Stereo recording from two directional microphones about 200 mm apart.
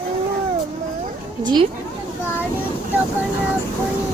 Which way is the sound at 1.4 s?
20° right (ahead or behind).